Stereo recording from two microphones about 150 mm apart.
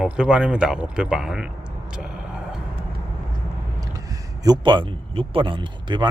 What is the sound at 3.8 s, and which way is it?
Speech, 25° right (ahead or behind).